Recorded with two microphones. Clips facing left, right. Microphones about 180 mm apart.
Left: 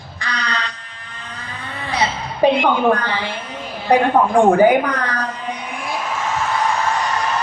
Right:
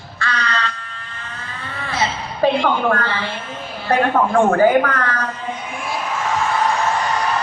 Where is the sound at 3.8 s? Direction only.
15° left (ahead or behind).